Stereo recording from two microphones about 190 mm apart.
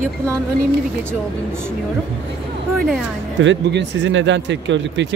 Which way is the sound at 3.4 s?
65° right (ahead or behind).